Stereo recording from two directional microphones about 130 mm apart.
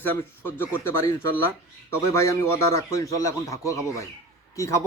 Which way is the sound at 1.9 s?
20° left (ahead or behind).